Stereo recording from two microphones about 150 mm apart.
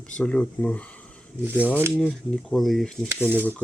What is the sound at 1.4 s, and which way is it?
Speech, 10° right (ahead or behind).